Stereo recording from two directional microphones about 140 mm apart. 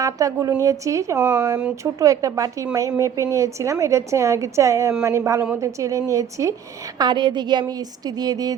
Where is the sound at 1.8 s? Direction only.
25° right (ahead or behind).